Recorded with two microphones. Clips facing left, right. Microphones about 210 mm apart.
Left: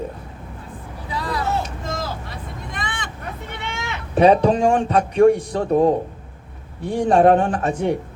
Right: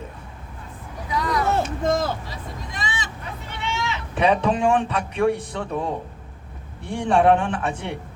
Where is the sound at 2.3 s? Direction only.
60° left (ahead or behind).